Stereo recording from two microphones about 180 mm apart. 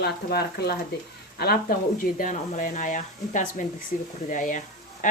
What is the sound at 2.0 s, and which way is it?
Speech, 50° left (ahead or behind).